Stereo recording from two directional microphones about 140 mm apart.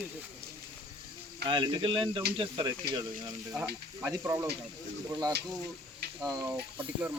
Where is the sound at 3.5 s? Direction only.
10° right (ahead or behind).